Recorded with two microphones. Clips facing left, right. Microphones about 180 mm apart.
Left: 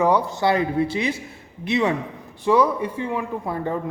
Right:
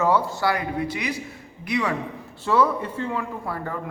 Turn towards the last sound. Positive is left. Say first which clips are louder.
# left 5 dB
turn(degrees=20)  # may be behind; listen again after turning